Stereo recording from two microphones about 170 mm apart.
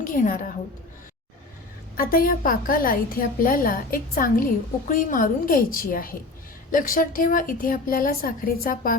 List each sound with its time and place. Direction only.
0.0 s a woman's voice: 55° left (ahead or behind)
2.0 s a woman's voice: 60° left (ahead or behind)